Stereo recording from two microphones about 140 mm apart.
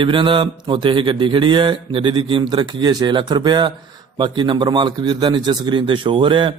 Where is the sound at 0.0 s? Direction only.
35° right (ahead or behind).